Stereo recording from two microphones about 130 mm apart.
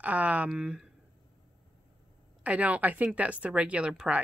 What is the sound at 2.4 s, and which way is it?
Speech, 10° right (ahead or behind).